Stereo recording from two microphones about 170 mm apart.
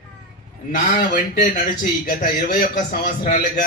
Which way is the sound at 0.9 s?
55° left (ahead or behind).